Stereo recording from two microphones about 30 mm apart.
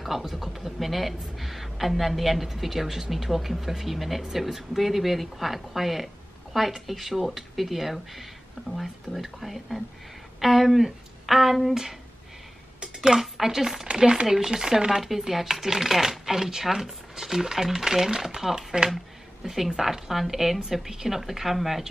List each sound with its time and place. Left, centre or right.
0.0 s speech: centre
12.8 s dishes: right
13.2 s speech: centre
13.9 s speech: right
14.2 s speech: centre
14.5 s speech: right
15.0 s speech: centre
18.7 s speech: right
19.4 s speech: centre
19.8 s speech: centre